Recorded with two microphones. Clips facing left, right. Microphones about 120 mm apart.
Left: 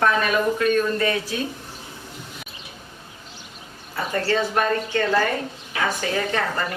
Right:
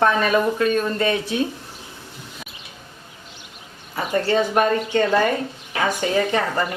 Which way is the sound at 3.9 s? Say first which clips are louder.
Right 3 dB; 15° right (ahead or behind).